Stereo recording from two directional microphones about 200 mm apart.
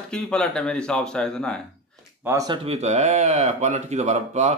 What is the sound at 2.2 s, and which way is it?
Speech, 20° right (ahead or behind).